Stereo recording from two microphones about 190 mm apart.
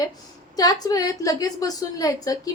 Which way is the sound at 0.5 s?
20° left (ahead or behind).